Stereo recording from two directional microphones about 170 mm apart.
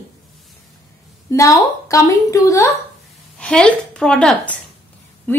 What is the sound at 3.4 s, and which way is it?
A woman's voice, 5° left (ahead or behind).